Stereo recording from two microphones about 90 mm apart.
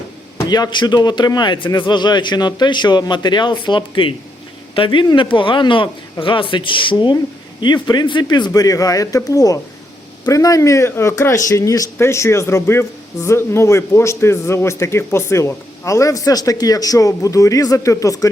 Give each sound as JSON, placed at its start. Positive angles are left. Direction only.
{"t": 0.5, "sound": "a man's voice", "side_deg": 55}
{"t": 8.5, "sound": "a man's voice", "side_deg": 40}